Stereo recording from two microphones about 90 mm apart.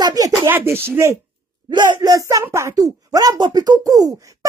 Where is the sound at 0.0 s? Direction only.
45° right (ahead or behind).